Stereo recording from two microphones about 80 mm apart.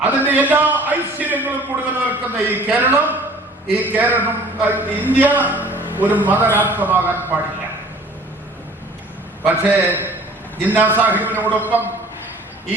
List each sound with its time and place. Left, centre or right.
0.0 s a sound: right
2.0 s a man's voice: right
9.5 s a man's voice: right